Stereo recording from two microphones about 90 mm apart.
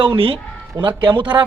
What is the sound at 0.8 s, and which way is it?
Speech, 60° right (ahead or behind).